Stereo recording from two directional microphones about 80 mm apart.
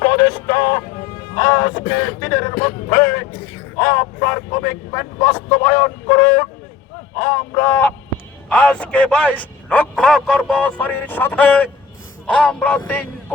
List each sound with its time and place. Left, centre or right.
0.0 s music: left
1.9 s speech: left
2.6 s a sound: left
4.2 s vehicle: left
4.9 s music: left
5.6 s fowl: left
7.2 s a sound: left
8.4 s a man's voice: centre
10.5 s music: centre